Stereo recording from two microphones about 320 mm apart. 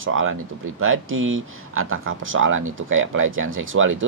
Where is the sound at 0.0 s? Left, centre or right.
Right.